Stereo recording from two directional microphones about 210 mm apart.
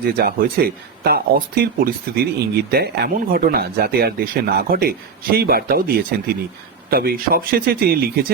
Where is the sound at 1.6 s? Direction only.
50° right (ahead or behind).